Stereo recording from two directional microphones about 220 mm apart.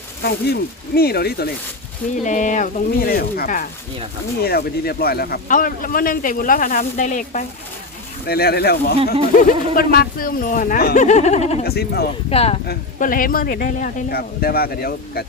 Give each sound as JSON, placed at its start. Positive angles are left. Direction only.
{"t": 0.2, "sound": "speech", "side_deg": 45}
{"t": 2.2, "sound": "a man's voice", "side_deg": 35}
{"t": 8.3, "sound": "a man's voice", "side_deg": 45}
{"t": 11.6, "sound": "speech", "side_deg": 45}
{"t": 12.3, "sound": "speech", "side_deg": 25}
{"t": 12.6, "sound": "a man's voice", "side_deg": 40}